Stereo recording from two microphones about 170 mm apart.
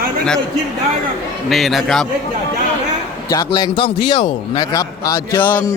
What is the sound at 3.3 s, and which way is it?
A man's voice, 25° left (ahead or behind).